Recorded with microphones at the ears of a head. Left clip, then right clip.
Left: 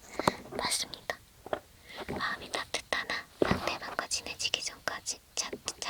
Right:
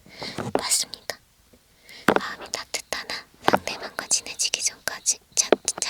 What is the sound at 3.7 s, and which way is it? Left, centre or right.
Whispering, right.